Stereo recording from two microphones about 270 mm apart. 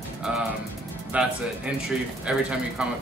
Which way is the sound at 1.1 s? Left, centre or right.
Centre.